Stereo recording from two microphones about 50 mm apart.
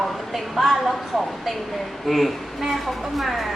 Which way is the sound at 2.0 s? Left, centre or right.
Centre.